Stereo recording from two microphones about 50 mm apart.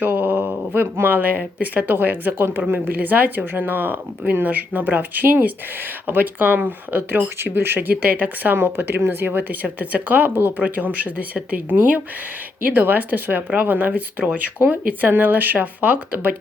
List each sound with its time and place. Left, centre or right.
0.0 s a sound: right
1.6 s speech: right
8.5 s speech: right
10.6 s speech: right